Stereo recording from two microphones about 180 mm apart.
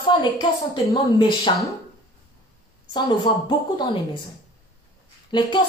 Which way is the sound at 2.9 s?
25° left (ahead or behind).